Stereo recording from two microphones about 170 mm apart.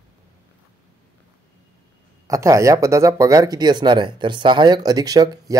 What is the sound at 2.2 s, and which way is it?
Speech, 20° right (ahead or behind).